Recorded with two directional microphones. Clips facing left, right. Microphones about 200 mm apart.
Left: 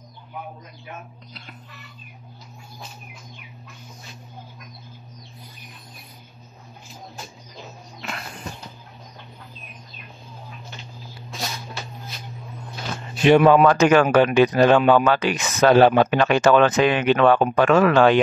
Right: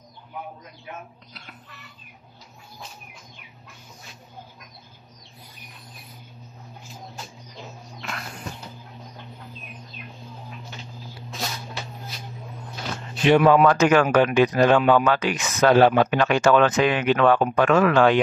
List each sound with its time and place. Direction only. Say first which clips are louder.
13.3 s speech: left 2 dB; 25° left (ahead or behind)